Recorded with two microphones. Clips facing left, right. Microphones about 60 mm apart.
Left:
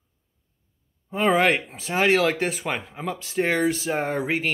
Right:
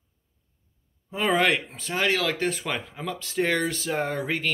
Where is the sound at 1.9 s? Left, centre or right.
Left.